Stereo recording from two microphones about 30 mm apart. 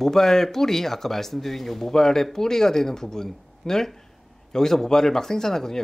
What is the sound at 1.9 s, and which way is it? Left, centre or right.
Speech, centre.